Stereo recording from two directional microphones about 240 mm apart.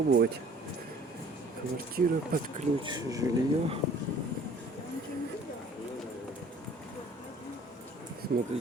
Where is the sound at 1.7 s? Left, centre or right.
Right.